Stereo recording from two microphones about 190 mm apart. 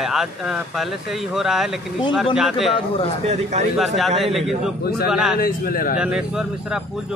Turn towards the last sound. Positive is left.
turn(degrees=-5)  # may be behind; listen again after turning